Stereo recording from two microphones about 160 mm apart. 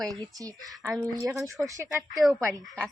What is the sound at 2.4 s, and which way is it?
Speech, 15° right (ahead or behind).